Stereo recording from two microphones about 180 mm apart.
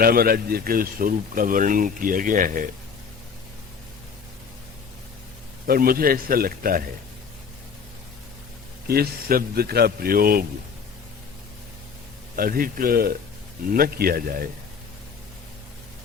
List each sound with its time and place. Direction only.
0.0 s speech: 55° right (ahead or behind)
5.6 s a man's voice: 55° right (ahead or behind)
8.9 s a man's voice: 55° right (ahead or behind)
12.4 s a man's voice: 50° right (ahead or behind)